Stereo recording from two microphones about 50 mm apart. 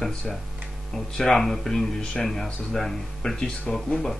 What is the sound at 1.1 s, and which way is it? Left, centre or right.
Speech, centre.